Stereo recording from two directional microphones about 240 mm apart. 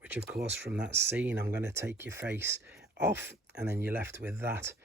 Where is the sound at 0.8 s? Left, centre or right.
Right.